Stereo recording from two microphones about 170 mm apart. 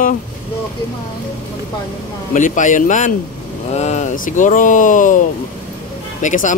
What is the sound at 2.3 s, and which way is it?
Speech, 50° left (ahead or behind).